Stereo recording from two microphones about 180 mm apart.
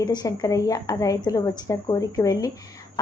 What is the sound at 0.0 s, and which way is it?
A woman's voice, 20° left (ahead or behind).